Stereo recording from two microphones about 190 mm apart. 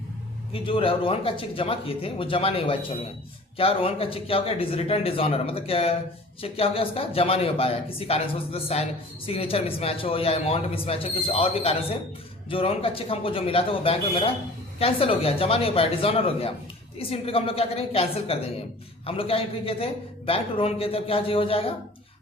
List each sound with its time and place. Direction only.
0.5 s a woman's voice: 30° left (ahead or behind)